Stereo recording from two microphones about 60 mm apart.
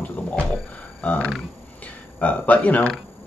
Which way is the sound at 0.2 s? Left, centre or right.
Left.